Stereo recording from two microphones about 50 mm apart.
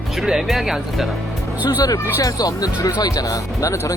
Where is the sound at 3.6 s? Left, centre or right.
Left.